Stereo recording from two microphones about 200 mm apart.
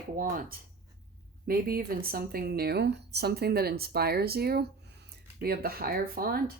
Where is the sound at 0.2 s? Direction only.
45° right (ahead or behind).